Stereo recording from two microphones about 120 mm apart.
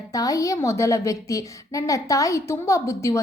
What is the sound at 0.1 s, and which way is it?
A woman's voice, 30° left (ahead or behind).